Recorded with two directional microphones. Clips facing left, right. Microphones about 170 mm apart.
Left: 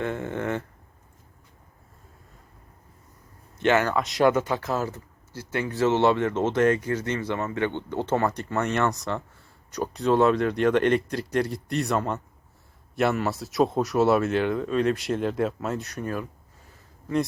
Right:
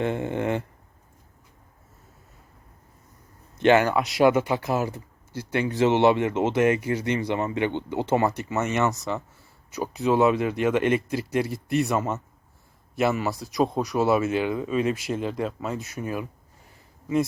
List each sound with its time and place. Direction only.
0.0 s speech: 20° right (ahead or behind)
3.6 s speech: 20° right (ahead or behind)